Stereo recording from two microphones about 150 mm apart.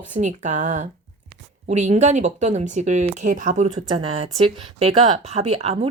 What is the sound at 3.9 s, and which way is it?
Speech, 40° right (ahead or behind).